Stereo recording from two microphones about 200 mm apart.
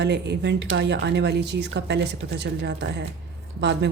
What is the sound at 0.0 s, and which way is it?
Speech, 60° right (ahead or behind).